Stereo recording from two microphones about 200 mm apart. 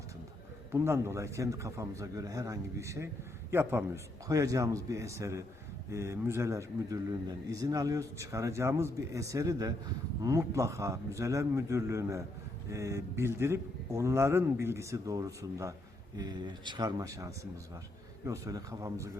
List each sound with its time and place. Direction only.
0.7 s a man's voice: 10° right (ahead or behind)